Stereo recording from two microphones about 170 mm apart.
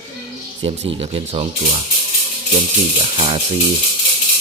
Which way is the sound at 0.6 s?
30° right (ahead or behind).